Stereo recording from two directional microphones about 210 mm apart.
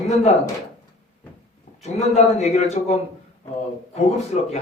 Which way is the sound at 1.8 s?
30° left (ahead or behind).